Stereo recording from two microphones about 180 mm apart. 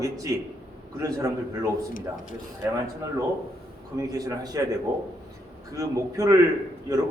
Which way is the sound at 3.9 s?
20° right (ahead or behind).